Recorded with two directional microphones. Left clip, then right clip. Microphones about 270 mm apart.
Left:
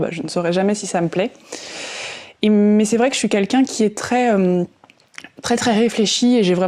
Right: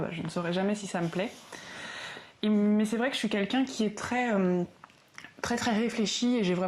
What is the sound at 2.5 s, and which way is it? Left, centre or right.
Speech, centre.